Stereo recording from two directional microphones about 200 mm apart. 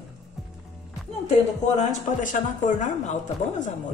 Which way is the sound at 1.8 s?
40° left (ahead or behind).